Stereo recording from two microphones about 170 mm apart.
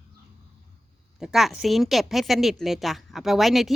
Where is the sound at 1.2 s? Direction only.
5° right (ahead or behind).